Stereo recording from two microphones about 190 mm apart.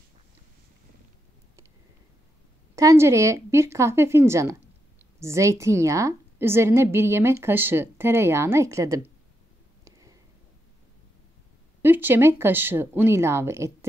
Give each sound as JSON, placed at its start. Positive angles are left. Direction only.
{"t": 2.7, "sound": "a woman's voice", "side_deg": -15}
{"t": 9.8, "sound": "a sound", "side_deg": -15}
{"t": 11.8, "sound": "a woman's voice", "side_deg": -10}